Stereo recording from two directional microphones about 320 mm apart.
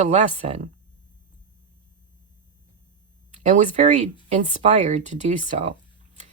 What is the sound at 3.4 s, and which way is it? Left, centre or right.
Speech, right.